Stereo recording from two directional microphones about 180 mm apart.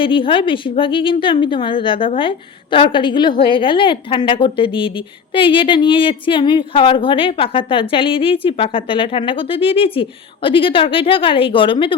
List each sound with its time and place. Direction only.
0.0 s speech: 30° left (ahead or behind)